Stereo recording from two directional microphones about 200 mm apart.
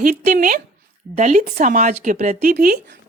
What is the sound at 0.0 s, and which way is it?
Speech, 45° right (ahead or behind).